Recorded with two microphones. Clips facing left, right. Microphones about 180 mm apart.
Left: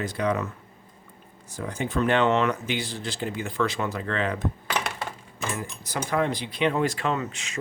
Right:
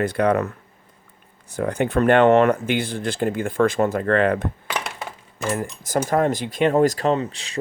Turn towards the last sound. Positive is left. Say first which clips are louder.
# right 7 dB
turn(degrees=-35)  # may be behind; listen again after turning